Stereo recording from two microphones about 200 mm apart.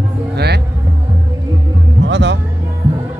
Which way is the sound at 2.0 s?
60° right (ahead or behind).